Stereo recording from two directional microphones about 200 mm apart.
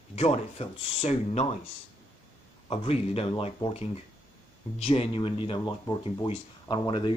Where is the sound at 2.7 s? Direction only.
30° left (ahead or behind).